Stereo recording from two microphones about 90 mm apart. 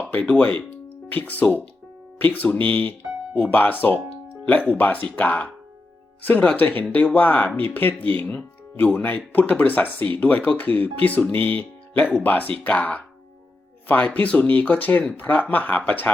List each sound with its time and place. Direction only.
0.1 s speech: 15° left (ahead or behind)